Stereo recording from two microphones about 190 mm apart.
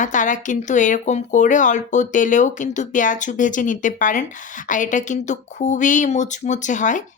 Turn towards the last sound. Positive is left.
turn(degrees=40)  # may be behind; listen again after turning